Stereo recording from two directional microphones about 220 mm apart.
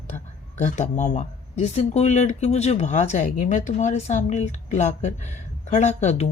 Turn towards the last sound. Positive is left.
turn(degrees=30)  # may be behind; listen again after turning